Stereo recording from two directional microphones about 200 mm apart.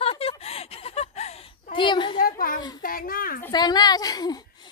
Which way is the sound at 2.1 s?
45° left (ahead or behind).